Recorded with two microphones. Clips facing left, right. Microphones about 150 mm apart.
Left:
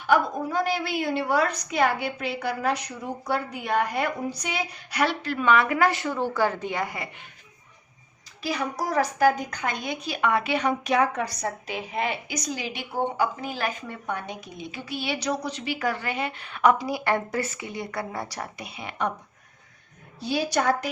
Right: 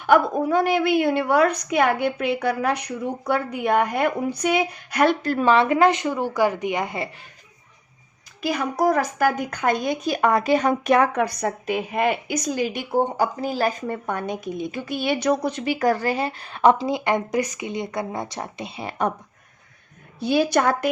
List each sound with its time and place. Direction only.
0.0 s a woman's voice: 60° right (ahead or behind); by 5.5 s 40° right (ahead or behind)
5.5 s a woman's voice: 25° right (ahead or behind)
8.4 s a woman's voice: 55° right (ahead or behind)
20.1 s a woman's voice: 55° right (ahead or behind)